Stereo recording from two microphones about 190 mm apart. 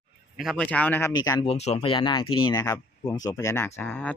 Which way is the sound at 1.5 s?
35° left (ahead or behind).